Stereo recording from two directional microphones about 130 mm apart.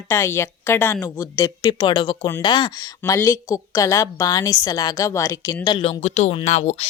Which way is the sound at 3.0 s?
20° left (ahead or behind).